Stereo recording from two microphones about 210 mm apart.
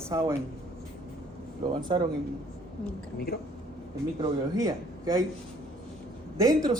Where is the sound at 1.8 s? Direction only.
20° right (ahead or behind).